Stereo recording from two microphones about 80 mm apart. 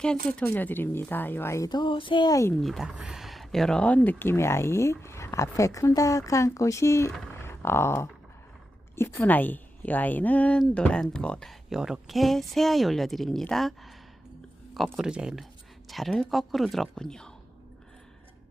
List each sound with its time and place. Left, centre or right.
0.0 s speech: centre
0.4 s a woman's voice: left
1.6 s a sound: left
2.6 s speech: centre
2.8 s speech: centre; by 7.1 s left
7.4 s a sound: left
9.0 s a woman's voice: left; by 11.5 s centre
11.7 s speech: centre
14.9 s speech: centre